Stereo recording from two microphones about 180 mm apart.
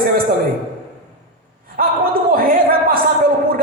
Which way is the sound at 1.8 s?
50° right (ahead or behind).